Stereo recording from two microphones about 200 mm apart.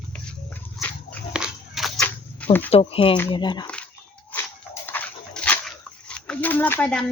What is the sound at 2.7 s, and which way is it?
Speech, 30° left (ahead or behind).